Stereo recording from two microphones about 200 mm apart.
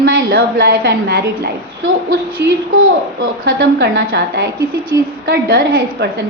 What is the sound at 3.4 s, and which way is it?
A woman's voice, 60° right (ahead or behind).